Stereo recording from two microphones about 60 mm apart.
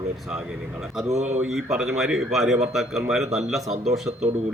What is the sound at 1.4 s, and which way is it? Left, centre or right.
A man's voice, centre.